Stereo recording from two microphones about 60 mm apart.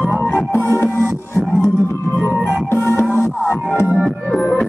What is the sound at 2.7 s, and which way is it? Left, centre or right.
Music, left.